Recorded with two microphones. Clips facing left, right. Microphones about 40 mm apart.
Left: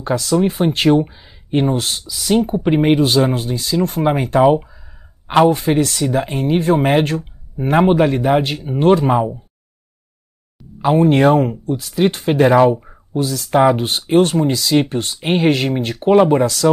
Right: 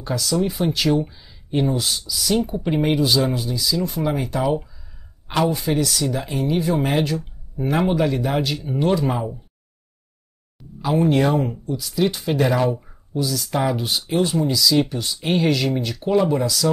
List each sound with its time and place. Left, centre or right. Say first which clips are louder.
0.0 s speech: left 6 dB; left
10.8 s speech: left 6 dB; left